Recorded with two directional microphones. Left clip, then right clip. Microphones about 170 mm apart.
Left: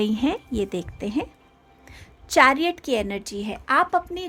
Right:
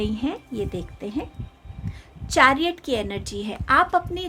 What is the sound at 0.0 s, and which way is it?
A woman's voice, 40° left (ahead or behind).